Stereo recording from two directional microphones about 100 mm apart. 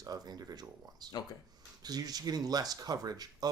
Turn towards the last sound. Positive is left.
turn(degrees=-40)  # may be behind; listen again after turning